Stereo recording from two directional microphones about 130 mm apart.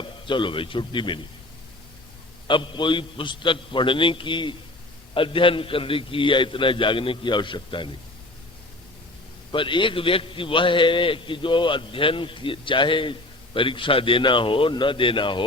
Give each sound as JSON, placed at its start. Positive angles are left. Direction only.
{"t": 0.0, "sound": "a man's voice", "side_deg": 40}
{"t": 2.5, "sound": "a man's voice", "side_deg": 40}
{"t": 9.5, "sound": "a man's voice", "side_deg": 40}